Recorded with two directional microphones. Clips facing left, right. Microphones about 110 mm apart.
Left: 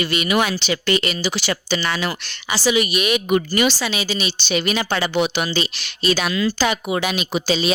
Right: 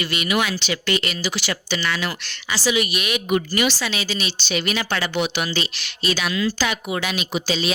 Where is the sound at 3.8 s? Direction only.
15° left (ahead or behind).